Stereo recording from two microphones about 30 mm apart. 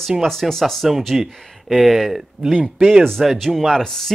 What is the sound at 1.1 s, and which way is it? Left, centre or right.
Speech, centre.